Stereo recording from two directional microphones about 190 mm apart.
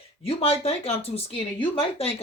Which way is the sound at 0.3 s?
30° left (ahead or behind).